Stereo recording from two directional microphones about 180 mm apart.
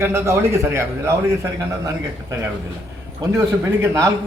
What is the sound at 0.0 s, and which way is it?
A man's voice, 15° right (ahead or behind).